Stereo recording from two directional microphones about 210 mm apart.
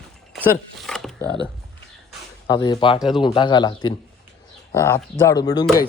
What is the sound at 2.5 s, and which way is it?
A man's voice, 20° left (ahead or behind).